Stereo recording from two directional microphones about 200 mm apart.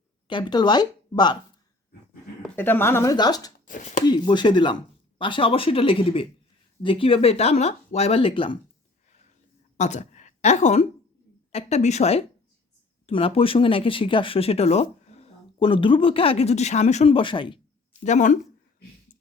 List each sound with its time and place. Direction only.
0.3 s a woman's voice: 20° left (ahead or behind)
2.4 s speech: 10° left (ahead or behind)
3.7 s speech: 40° left (ahead or behind)
4.0 s speech: 20° left (ahead or behind)
9.7 s a woman's voice: 35° left (ahead or behind)
18.0 s speech: 35° left (ahead or behind)